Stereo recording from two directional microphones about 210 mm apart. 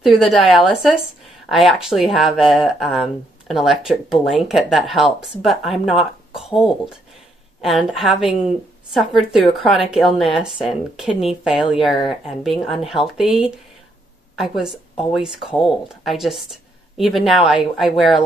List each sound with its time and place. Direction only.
0.0 s speech: centre (ahead or behind)